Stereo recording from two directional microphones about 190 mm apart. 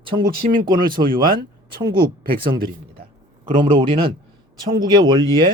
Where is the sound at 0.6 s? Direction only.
20° right (ahead or behind).